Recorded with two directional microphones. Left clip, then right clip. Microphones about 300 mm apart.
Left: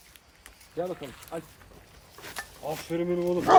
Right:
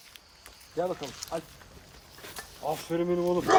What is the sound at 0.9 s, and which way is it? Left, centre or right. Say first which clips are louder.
Speech: right 3 dB; centre.